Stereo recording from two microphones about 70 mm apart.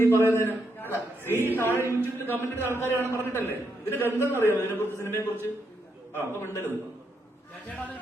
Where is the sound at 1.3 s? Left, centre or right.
Right.